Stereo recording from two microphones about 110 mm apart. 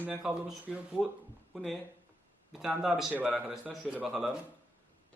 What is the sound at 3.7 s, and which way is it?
Speech, 10° right (ahead or behind).